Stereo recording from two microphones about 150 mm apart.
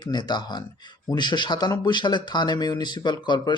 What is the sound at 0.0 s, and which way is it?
Speech, 30° left (ahead or behind).